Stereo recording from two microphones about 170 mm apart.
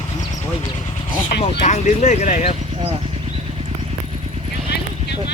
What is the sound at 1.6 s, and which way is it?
Speech, 45° left (ahead or behind).